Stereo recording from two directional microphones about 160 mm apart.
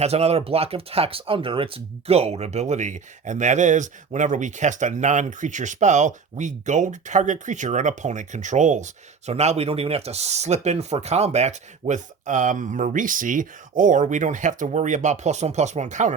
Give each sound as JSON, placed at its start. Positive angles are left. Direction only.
{"t": 0.0, "sound": "speech", "side_deg": -40}